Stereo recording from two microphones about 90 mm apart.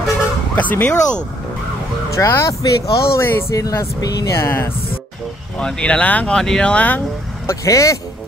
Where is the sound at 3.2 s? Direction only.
25° left (ahead or behind); by 4.3 s 45° left (ahead or behind).